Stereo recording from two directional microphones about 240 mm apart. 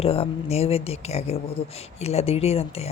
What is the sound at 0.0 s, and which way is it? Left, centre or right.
Speech, left.